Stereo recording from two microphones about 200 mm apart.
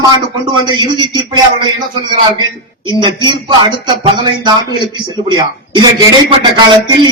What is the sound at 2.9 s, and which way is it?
Speech, 25° right (ahead or behind).